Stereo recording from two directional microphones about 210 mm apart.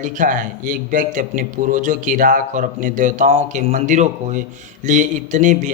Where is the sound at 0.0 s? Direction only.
40° right (ahead or behind).